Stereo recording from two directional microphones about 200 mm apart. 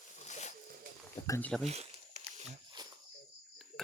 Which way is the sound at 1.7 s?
35° right (ahead or behind).